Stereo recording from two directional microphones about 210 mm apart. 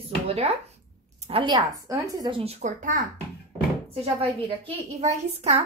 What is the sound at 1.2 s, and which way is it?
Speech, 25° right (ahead or behind).